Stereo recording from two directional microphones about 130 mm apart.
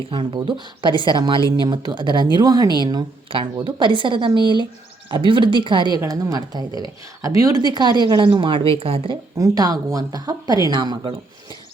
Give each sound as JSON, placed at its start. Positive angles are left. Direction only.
{"t": 0.1, "sound": "a woman's voice", "side_deg": -35}
{"t": 1.4, "sound": "speech", "side_deg": 30}
{"t": 1.6, "sound": "a woman's voice", "side_deg": -35}
{"t": 9.4, "sound": "speech", "side_deg": -30}